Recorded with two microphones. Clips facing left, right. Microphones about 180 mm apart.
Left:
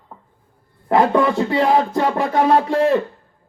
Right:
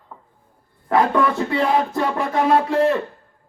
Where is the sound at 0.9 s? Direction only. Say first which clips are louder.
Left 2 dB; 25° left (ahead or behind).